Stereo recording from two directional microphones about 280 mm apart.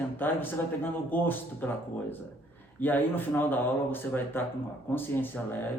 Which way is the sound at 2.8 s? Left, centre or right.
Centre.